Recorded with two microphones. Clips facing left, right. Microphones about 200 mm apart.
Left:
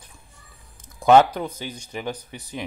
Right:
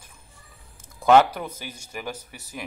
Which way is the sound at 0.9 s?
15° left (ahead or behind).